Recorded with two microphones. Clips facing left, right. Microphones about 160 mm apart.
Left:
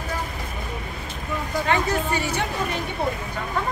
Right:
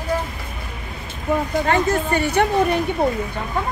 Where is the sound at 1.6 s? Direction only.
55° right (ahead or behind).